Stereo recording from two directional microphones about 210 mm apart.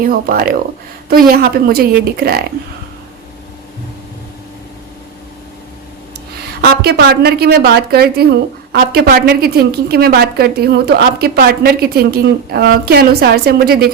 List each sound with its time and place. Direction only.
0.0 s a woman's voice: 45° right (ahead or behind)
6.6 s a woman's voice: 50° right (ahead or behind)